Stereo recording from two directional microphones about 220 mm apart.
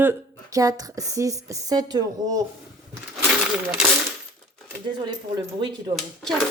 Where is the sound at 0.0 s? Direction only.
15° right (ahead or behind).